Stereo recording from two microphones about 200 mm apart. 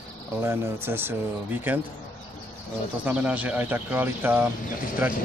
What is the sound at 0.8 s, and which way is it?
Speech, 10° right (ahead or behind).